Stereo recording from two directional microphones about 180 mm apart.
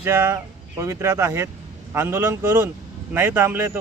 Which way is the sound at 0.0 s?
15° right (ahead or behind).